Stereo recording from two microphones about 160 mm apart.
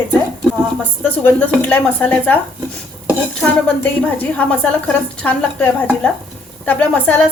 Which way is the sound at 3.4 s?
10° left (ahead or behind).